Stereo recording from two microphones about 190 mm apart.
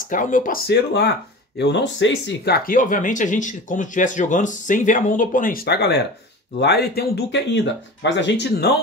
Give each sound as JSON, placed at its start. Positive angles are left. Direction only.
{"t": 0.0, "sound": "speech", "side_deg": 45}